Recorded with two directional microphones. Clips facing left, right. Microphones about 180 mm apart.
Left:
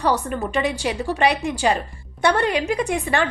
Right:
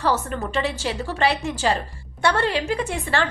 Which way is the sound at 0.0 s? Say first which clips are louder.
Left 2 dB; 15° left (ahead or behind).